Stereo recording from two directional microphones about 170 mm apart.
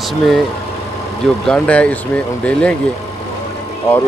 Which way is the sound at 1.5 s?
5° left (ahead or behind).